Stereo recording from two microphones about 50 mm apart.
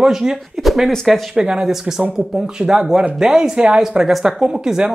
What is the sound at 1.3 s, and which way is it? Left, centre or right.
Speech, centre.